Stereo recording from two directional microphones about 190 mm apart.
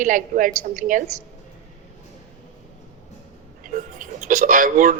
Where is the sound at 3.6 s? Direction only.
45° right (ahead or behind).